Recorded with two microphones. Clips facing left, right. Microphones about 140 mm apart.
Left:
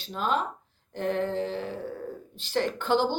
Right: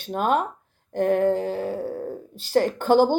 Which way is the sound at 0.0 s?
55° right (ahead or behind).